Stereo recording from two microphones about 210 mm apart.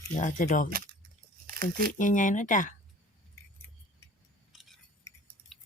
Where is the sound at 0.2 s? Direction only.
35° left (ahead or behind).